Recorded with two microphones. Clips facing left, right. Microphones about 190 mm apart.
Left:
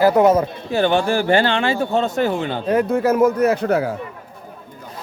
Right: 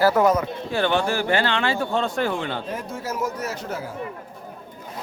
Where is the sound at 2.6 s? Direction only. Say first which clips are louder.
Left 13 dB; 65° left (ahead or behind).